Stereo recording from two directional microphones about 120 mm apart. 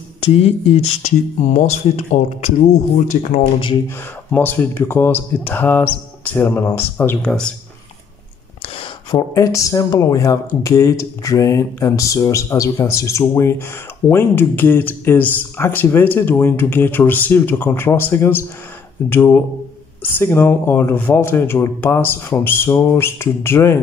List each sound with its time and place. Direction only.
0.3 s speech: 55° left (ahead or behind); by 3.3 s 80° left
4.3 s speech: 15° left (ahead or behind)
7.2 s speech: 5° left (ahead or behind)
8.6 s a sound: 55° left (ahead or behind)
9.3 s speech: 25° left (ahead or behind)